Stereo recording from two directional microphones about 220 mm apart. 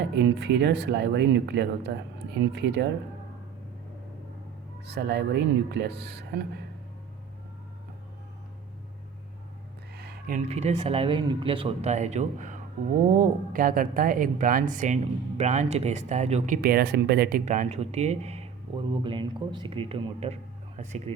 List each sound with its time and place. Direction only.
0.1 s speech: 50° right (ahead or behind)
4.9 s speech: 50° right (ahead or behind)
9.9 s speech: 45° right (ahead or behind)
16.6 s speech: 45° right (ahead or behind); by 21.0 s 30° right (ahead or behind)